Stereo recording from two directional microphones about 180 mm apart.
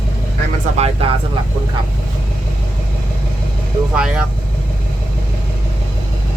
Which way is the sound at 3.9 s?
5° right (ahead or behind).